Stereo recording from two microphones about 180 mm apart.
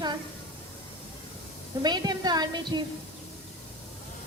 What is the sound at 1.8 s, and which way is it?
A woman's voice, 20° right (ahead or behind).